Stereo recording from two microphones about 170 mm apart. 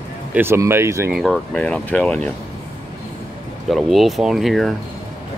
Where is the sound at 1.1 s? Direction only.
Centre (ahead or behind).